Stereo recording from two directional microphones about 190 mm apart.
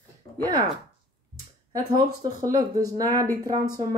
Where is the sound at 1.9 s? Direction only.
20° right (ahead or behind).